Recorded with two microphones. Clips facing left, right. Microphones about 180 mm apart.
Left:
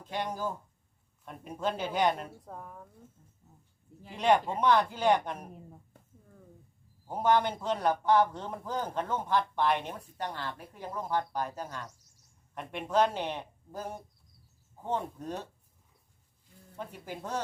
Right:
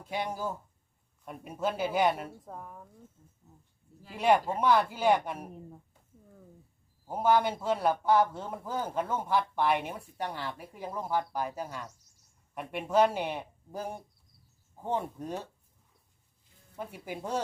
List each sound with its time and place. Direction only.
0.0 s speech: 10° right (ahead or behind)
4.1 s speech: 10° right (ahead or behind)
7.1 s speech: 10° right (ahead or behind)
16.7 s speech: 10° right (ahead or behind)